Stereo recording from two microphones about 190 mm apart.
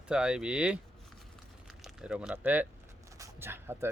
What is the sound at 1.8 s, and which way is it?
Speech, 5° right (ahead or behind).